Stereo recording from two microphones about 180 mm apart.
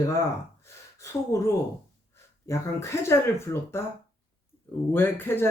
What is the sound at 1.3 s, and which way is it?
Speech, 15° left (ahead or behind).